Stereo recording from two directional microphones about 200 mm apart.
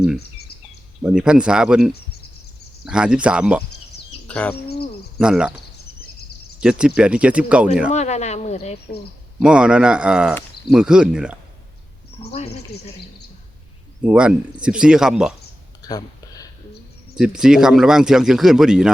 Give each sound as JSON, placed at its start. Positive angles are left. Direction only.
{"t": 0.2, "sound": "a sound", "side_deg": 50}
{"t": 1.0, "sound": "speech", "side_deg": -5}
{"t": 4.3, "sound": "speech", "side_deg": 5}
{"t": 4.5, "sound": "hoot", "side_deg": 50}
{"t": 5.1, "sound": "speech", "side_deg": -5}
{"t": 6.6, "sound": "speech", "side_deg": -5}
{"t": 7.9, "sound": "speech", "side_deg": 35}
{"t": 9.4, "sound": "speech", "side_deg": -5}
{"t": 12.2, "sound": "speech", "side_deg": 30}
{"t": 14.0, "sound": "speech", "side_deg": -5}
{"t": 15.8, "sound": "a sound", "side_deg": 20}
{"t": 17.2, "sound": "speech", "side_deg": -5}